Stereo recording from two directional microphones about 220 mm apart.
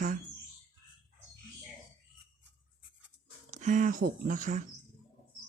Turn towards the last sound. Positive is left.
turn(degrees=-35)  # may be behind; listen again after turning